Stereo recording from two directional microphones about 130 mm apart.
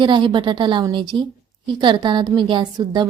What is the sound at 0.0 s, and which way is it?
A woman's voice, 35° right (ahead or behind).